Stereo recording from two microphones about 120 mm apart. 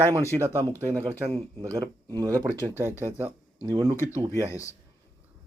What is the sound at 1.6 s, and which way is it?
Speech, 25° right (ahead or behind).